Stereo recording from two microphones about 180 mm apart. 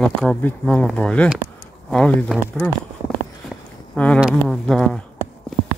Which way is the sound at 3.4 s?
5° left (ahead or behind).